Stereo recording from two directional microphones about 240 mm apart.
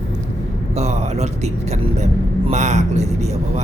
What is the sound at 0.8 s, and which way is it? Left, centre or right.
Speech, right.